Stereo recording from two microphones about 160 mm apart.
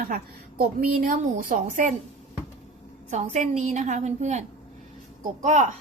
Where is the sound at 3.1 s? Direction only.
45° right (ahead or behind).